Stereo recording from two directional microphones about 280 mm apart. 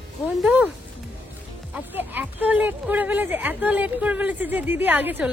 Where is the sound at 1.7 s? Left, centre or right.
Centre.